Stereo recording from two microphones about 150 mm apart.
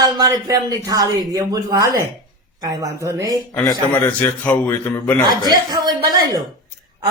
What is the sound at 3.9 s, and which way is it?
A man's voice, 10° left (ahead or behind).